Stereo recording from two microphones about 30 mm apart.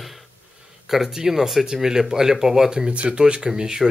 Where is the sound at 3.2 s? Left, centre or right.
Right.